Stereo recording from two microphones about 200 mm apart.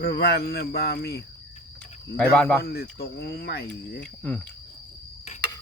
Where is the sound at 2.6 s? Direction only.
50° left (ahead or behind).